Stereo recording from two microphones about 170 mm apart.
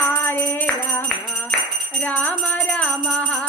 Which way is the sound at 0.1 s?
10° left (ahead or behind).